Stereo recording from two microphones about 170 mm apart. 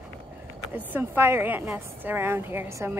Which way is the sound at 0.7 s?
10° right (ahead or behind).